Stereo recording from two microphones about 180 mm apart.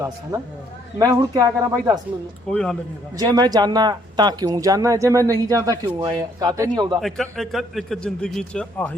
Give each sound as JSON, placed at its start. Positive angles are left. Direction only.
{"t": 0.0, "sound": "speech", "side_deg": -15}
{"t": 2.5, "sound": "speech", "side_deg": 5}
{"t": 3.2, "sound": "speech", "side_deg": -20}
{"t": 7.0, "sound": "a man's voice", "side_deg": 0}